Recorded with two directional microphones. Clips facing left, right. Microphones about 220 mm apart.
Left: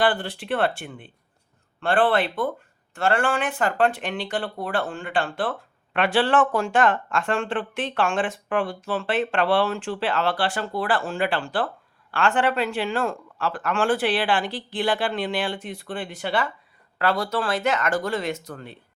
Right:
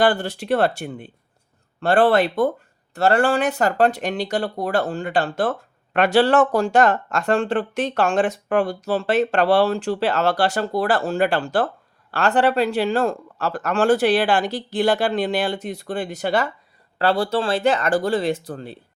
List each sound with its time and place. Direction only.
0.0 s speech: 45° right (ahead or behind)
17.0 s speech: 30° right (ahead or behind)